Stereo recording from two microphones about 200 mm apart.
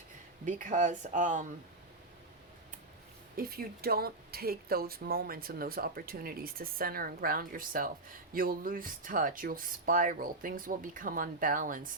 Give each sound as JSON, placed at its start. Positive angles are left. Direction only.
{"t": 0.4, "sound": "speech", "side_deg": -40}
{"t": 3.3, "sound": "speech", "side_deg": -45}